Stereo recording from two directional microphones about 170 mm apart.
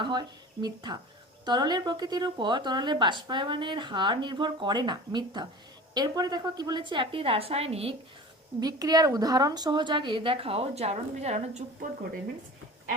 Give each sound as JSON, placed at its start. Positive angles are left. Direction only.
{"t": 0.0, "sound": "speech", "side_deg": -25}
{"t": 8.6, "sound": "speech", "side_deg": -20}